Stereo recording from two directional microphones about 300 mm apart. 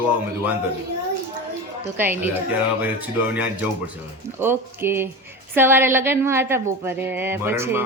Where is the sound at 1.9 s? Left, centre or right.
Centre.